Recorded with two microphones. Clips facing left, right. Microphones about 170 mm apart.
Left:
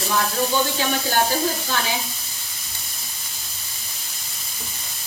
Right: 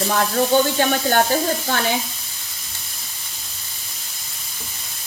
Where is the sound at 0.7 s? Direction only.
55° right (ahead or behind).